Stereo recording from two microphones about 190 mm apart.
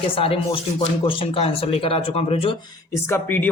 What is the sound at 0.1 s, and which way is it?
Speech, 30° left (ahead or behind).